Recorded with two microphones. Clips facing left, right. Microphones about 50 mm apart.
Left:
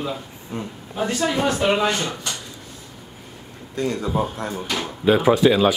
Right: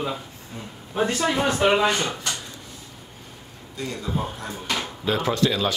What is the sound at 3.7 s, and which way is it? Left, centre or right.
Speech, left.